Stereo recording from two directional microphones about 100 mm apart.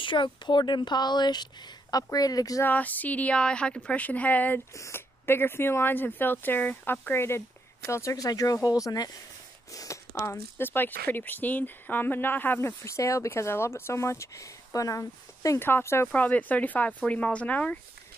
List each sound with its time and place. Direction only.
0.0 s speech: 55° left (ahead or behind); by 2.6 s 35° left (ahead or behind)
2.6 s a woman's voice: 15° left (ahead or behind)
4.7 s speech: 25° left (ahead or behind)
10.2 s a woman's voice: 25° left (ahead or behind)